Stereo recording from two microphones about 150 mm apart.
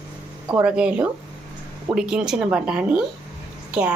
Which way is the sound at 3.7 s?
10° right (ahead or behind).